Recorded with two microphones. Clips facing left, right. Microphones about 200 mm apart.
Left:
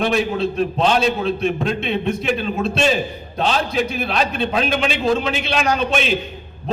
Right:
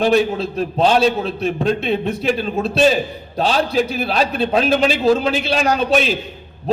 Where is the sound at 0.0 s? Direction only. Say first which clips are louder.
Right 3 dB; 35° right (ahead or behind).